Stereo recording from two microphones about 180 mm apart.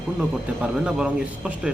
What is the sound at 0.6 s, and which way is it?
Speech, 5° right (ahead or behind).